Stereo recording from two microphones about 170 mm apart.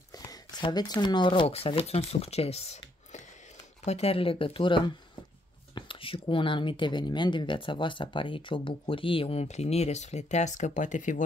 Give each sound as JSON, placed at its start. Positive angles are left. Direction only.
{"t": 0.1, "sound": "speech", "side_deg": 25}
{"t": 3.8, "sound": "speech", "side_deg": 40}